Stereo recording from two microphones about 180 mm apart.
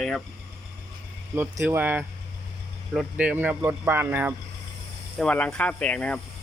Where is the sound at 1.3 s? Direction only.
10° right (ahead or behind).